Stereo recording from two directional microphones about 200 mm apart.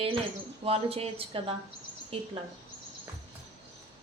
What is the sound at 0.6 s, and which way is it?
Speech, 30° right (ahead or behind).